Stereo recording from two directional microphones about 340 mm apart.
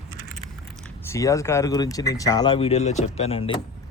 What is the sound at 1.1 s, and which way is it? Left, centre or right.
Speech, centre.